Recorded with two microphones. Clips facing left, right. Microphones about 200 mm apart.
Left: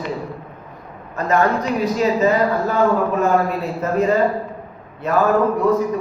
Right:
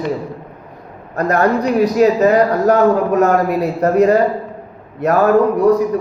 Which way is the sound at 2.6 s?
75° right (ahead or behind).